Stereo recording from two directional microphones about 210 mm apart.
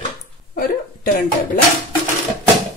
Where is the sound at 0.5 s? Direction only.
40° left (ahead or behind).